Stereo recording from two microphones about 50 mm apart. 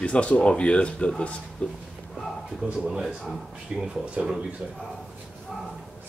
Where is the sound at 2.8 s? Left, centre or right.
Centre.